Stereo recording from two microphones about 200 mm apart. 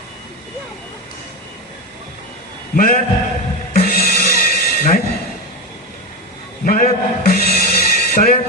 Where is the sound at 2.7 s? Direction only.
45° left (ahead or behind).